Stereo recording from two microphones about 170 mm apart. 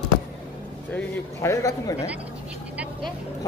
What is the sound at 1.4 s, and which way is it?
Speech, 20° left (ahead or behind).